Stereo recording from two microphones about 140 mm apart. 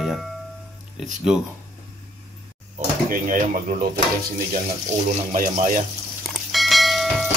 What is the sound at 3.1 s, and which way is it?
Speech, 75° right (ahead or behind).